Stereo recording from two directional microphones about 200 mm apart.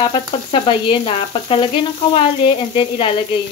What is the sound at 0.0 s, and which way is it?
Frying, 25° left (ahead or behind).